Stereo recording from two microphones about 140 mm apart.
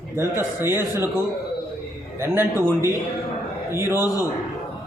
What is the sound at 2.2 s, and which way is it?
Speech, 15° right (ahead or behind).